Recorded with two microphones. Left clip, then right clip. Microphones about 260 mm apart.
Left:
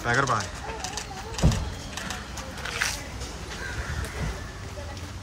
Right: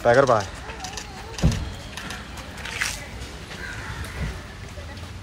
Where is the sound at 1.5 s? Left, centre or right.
Left.